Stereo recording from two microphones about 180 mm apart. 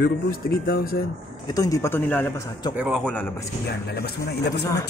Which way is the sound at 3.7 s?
60° left (ahead or behind).